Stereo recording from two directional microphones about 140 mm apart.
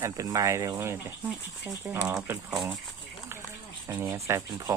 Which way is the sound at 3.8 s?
25° right (ahead or behind).